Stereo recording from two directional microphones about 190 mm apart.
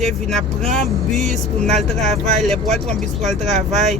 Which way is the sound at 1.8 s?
Centre (ahead or behind).